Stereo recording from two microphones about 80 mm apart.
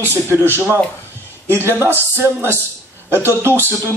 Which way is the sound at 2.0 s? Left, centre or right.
Right.